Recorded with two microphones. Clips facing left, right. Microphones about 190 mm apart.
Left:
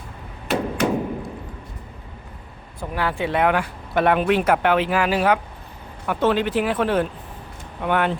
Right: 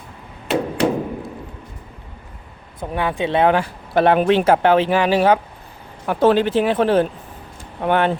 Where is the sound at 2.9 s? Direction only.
20° right (ahead or behind).